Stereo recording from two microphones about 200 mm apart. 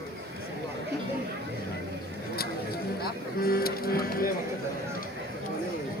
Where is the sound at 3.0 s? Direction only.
50° left (ahead or behind).